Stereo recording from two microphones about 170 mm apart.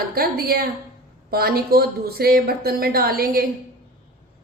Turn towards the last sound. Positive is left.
turn(degrees=-60)  # may be behind; listen again after turning